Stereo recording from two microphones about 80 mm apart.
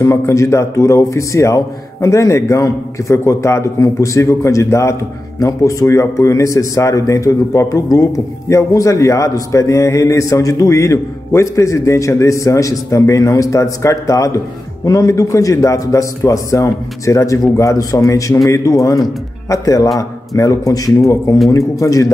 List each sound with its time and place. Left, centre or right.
0.0 s a man's voice: left